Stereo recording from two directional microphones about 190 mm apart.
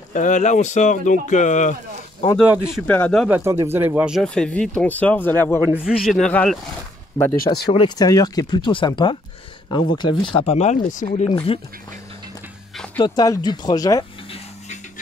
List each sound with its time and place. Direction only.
0.1 s speech: 40° left (ahead or behind)
2.3 s speech: 5° right (ahead or behind)
2.9 s speech: 5° left (ahead or behind)
3.3 s speech: 10° right (ahead or behind); by 5.6 s 10° left (ahead or behind)
5.7 s speech: 5° right (ahead or behind)
7.3 s speech: 50° left (ahead or behind)
7.6 s speech: 25° left (ahead or behind); by 11.2 s 40° left (ahead or behind)
11.2 s speech: 30° left (ahead or behind)
13.0 s speech: 20° left (ahead or behind)